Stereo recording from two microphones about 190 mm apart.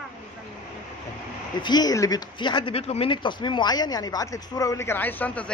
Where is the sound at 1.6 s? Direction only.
20° left (ahead or behind).